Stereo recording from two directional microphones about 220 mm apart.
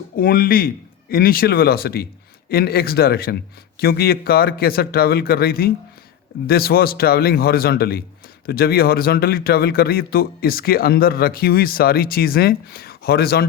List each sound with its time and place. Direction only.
0.2 s speech: 40° left (ahead or behind)